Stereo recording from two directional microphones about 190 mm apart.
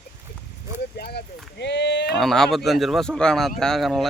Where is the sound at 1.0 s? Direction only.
60° left (ahead or behind).